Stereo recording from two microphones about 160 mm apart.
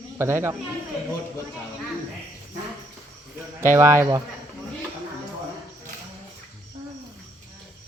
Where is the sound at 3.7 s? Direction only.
15° right (ahead or behind).